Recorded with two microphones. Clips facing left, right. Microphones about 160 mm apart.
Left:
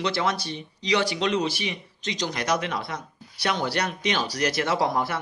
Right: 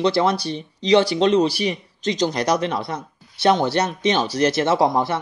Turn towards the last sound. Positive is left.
turn(degrees=-25)  # may be behind; listen again after turning